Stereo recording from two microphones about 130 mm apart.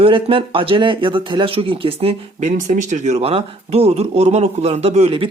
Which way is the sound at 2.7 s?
70° right (ahead or behind).